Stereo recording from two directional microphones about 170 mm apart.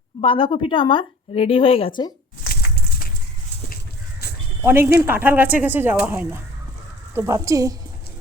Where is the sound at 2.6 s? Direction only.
70° left (ahead or behind).